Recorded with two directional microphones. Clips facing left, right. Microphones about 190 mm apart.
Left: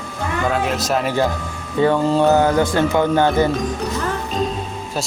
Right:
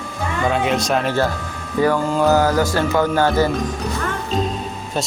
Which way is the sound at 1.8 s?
25° left (ahead or behind).